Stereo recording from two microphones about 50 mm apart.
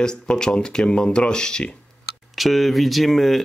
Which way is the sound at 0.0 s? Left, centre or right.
Centre.